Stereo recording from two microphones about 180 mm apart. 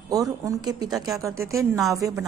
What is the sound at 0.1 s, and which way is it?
Speech, 20° right (ahead or behind).